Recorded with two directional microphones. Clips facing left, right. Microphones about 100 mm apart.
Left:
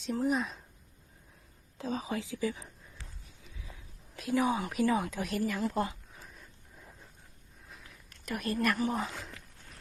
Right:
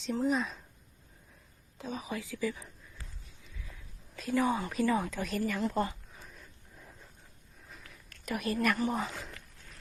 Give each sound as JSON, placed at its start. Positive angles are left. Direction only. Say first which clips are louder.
{"t": 0.0, "sound": "speech", "louder": "even", "side_deg": 0}
{"t": 1.8, "sound": "a woman's voice", "louder": "left 3 dB", "side_deg": 30}
{"t": 5.5, "sound": "a sound", "louder": "even", "side_deg": 0}
{"t": 8.2, "sound": "speech", "louder": "right 1 dB", "side_deg": 0}